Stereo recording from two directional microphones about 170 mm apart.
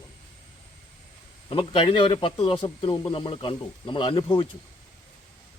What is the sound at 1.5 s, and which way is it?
Speech, 30° left (ahead or behind).